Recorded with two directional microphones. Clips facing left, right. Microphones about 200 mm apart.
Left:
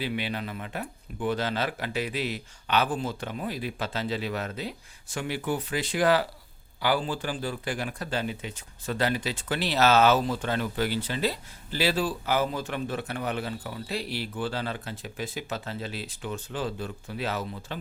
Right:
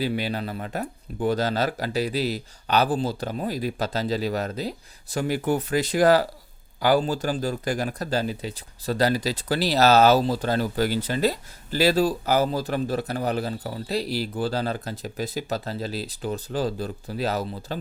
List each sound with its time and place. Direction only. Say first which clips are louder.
0.0 s speech: right 5 dB; 40° right (ahead or behind)